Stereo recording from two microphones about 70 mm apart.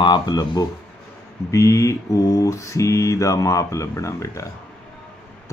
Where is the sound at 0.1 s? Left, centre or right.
Left.